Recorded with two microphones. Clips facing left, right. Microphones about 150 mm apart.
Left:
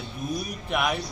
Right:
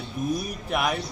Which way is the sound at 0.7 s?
Centre (ahead or behind).